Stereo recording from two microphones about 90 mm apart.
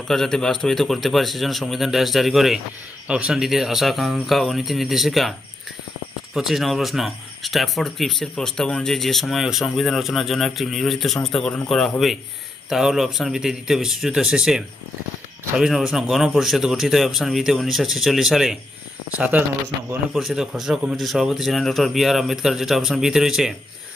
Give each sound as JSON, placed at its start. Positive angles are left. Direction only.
{"t": 0.1, "sound": "speech", "side_deg": 5}
{"t": 6.3, "sound": "speech", "side_deg": -5}
{"t": 19.1, "sound": "speech", "side_deg": -15}
{"t": 20.1, "sound": "speech", "side_deg": -5}